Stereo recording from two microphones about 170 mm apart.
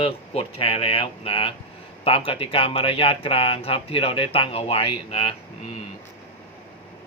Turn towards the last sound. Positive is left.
turn(degrees=35)  # may be behind; listen again after turning